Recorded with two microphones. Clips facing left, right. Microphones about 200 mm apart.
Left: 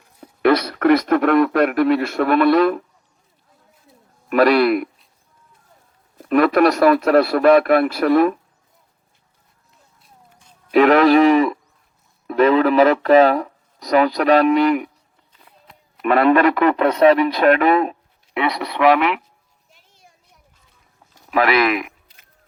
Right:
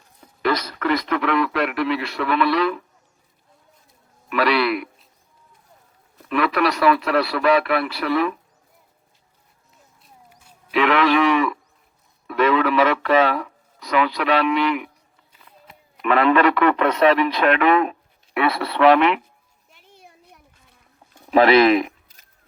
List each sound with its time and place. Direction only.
0.2 s speech: 60° left (ahead or behind)
4.3 s speech: 45° left (ahead or behind)
6.2 s speech: 45° left (ahead or behind)
10.7 s speech: 45° left (ahead or behind)
15.3 s a sound: 5° right (ahead or behind)
16.0 s speech: 45° left (ahead or behind)
18.3 s speech: 20° left (ahead or behind)
19.7 s a sound: 60° right (ahead or behind)
21.2 s a sound: 30° right (ahead or behind)